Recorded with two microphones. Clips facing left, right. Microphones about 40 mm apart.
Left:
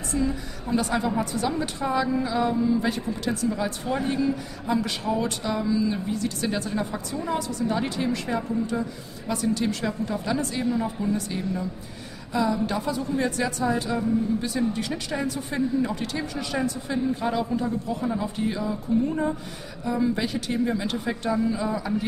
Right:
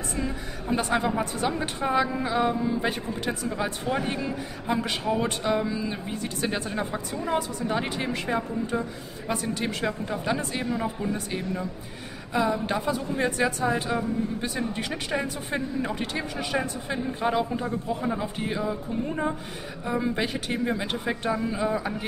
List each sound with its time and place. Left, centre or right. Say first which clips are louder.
0.2 s a woman's voice: left 4 dB; right